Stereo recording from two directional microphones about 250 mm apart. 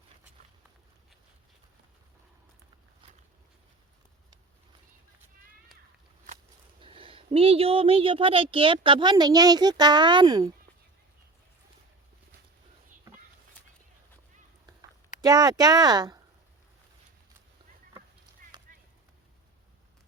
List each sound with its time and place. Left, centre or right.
6.2 s speech: right
15.2 s speech: centre